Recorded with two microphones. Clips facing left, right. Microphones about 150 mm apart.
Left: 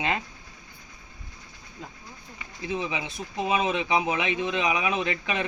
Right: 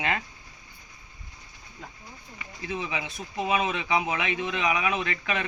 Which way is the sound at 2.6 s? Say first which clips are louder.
Left 2 dB; 20° left (ahead or behind).